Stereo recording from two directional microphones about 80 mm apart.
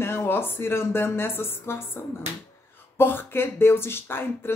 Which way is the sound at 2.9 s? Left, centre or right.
Left.